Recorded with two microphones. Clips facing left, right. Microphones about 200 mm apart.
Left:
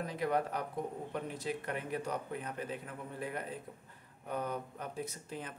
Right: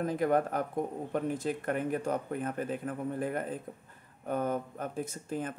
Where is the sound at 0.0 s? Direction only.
50° right (ahead or behind).